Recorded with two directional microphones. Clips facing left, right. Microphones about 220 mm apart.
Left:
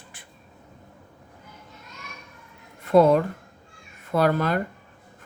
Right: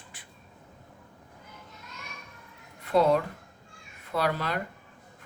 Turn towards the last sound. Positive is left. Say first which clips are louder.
# left 7 dB
turn(degrees=50)  # may be behind; listen again after turning